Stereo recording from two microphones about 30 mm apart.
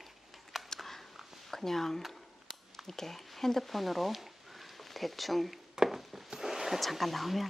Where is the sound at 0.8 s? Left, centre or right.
Centre.